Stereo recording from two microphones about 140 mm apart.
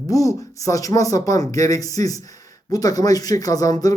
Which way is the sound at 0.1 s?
25° left (ahead or behind).